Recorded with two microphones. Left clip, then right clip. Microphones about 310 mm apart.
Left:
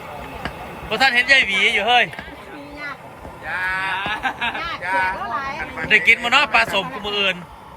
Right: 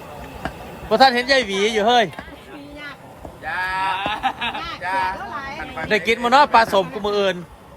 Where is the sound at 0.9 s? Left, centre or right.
Centre.